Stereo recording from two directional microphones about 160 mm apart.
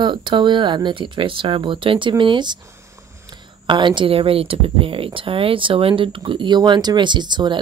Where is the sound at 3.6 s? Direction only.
30° right (ahead or behind).